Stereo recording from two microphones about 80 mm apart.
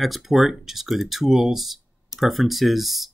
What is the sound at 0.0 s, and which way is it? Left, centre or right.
Speech, centre.